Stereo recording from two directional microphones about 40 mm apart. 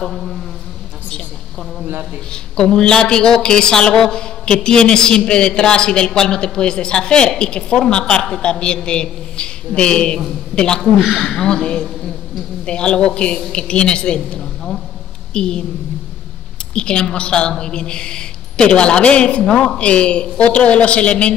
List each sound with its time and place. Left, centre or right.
0.0 s speech: centre
2.3 s a woman's voice: centre
11.0 s speech: centre
11.3 s a woman's voice: left
16.7 s a woman's voice: left